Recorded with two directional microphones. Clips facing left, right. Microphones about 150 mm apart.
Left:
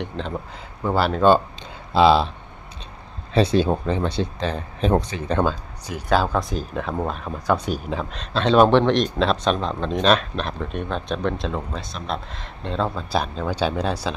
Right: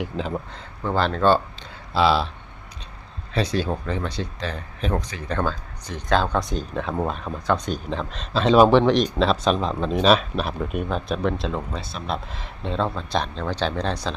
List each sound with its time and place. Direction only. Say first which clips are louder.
0.0 s speech: right 1 dB; 5° right (ahead or behind)
0.8 s speech: left 2 dB; 10° left (ahead or behind)
3.3 s speech: left 6 dB; 25° left (ahead or behind); by 14.2 s 5° left (ahead or behind)